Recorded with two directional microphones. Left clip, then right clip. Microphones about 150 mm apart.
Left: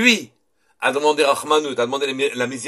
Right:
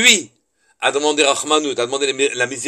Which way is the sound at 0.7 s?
30° right (ahead or behind).